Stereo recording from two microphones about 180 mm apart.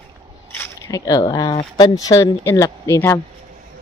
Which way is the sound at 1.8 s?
20° left (ahead or behind).